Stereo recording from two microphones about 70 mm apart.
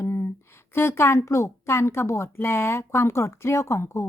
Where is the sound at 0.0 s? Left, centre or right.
Left.